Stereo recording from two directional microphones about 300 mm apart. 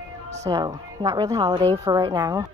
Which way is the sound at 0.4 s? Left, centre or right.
Centre.